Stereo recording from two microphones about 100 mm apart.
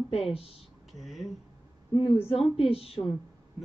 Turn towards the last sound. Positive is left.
turn(degrees=75)  # may be behind; listen again after turning